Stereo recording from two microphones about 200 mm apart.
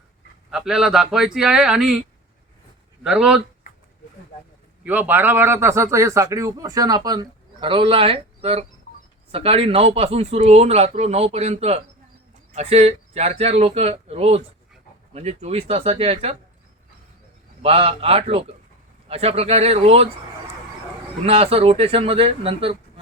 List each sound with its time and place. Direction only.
0.5 s speech: 5° right (ahead or behind)
3.0 s speech: 5° right (ahead or behind)
4.8 s speech: 10° right (ahead or behind); by 16.3 s 30° right (ahead or behind)
17.6 s speech: 30° right (ahead or behind)
21.2 s speech: 30° right (ahead or behind)